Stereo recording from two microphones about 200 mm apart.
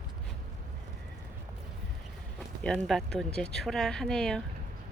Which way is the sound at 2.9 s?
Centre (ahead or behind).